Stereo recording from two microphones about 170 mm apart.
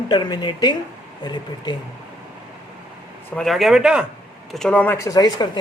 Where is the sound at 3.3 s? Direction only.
Centre (ahead or behind).